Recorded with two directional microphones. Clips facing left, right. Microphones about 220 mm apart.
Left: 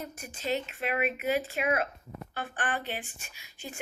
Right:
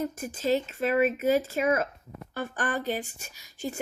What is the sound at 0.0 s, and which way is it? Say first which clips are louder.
Speech: right 8 dB; 40° right (ahead or behind).